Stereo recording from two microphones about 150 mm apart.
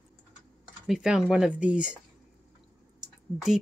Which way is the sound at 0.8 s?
5° right (ahead or behind).